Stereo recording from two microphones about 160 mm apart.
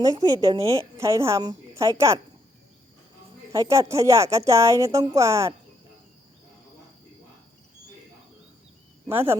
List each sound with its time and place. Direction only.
0.0 s a woman's voice: 25° right (ahead or behind)
3.5 s a woman's voice: 20° right (ahead or behind)
9.0 s speech: 15° right (ahead or behind)